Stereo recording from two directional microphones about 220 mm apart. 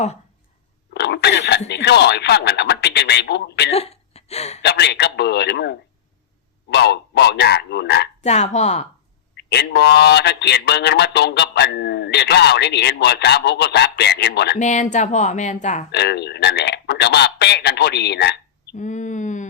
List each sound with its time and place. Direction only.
0.9 s speech: 50° left (ahead or behind)
3.7 s hiccup: 30° left (ahead or behind)
4.6 s a man's voice: 50° left (ahead or behind)
8.2 s speech: 30° left (ahead or behind)
9.3 s a man's voice: 50° left (ahead or behind)
14.6 s speech: 35° left (ahead or behind)
15.9 s a man's voice: 50° left (ahead or behind)
18.8 s a sound: 35° left (ahead or behind)